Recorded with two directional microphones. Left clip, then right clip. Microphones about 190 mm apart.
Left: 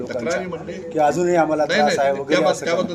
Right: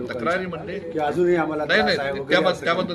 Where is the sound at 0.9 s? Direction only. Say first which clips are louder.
Left 4 dB; 45° left (ahead or behind).